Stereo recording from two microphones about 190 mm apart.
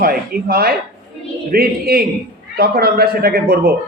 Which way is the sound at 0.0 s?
55° right (ahead or behind).